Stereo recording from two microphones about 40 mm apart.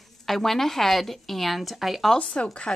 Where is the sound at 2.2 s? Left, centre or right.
Left.